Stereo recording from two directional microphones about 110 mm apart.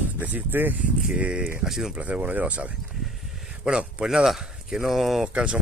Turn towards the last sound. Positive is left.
turn(degrees=-5)  # may be behind; listen again after turning